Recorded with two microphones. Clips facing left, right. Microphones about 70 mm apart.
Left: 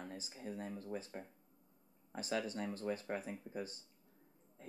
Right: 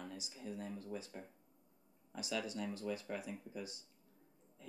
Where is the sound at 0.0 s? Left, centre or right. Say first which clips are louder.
Left 1 dB; left.